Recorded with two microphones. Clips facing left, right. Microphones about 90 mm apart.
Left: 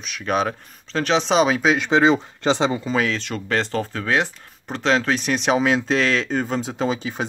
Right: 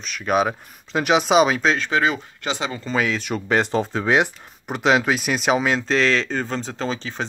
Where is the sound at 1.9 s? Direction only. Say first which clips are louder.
Left 4 dB; 25° left (ahead or behind).